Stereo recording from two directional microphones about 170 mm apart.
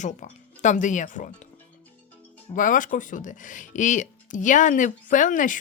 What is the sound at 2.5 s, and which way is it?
Speech, 50° left (ahead or behind).